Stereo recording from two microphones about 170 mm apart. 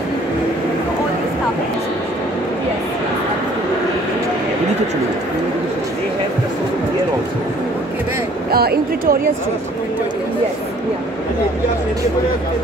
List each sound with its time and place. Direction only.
8.5 s speech: 65° right (ahead or behind)